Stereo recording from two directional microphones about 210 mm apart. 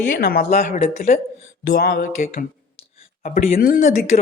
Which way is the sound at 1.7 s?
45° left (ahead or behind).